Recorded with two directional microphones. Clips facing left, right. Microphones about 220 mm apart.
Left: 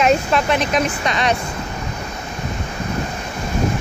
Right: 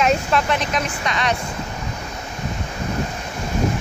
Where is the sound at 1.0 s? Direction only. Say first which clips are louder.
Left 3 dB; 25° left (ahead or behind).